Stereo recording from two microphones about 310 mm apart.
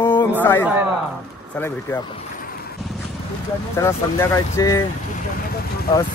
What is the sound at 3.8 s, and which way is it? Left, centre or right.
Speech, centre.